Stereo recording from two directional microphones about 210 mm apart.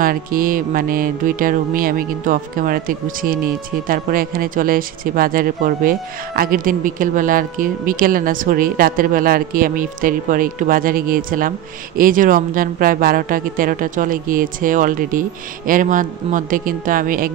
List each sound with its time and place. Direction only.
0.0 s mantra: 45° right (ahead or behind)